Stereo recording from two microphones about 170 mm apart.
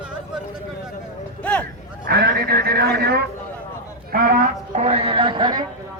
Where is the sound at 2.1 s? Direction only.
65° right (ahead or behind).